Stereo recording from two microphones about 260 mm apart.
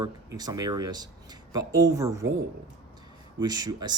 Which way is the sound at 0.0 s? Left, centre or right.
Centre.